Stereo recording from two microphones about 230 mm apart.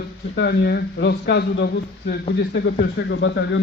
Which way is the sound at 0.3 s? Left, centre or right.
Left.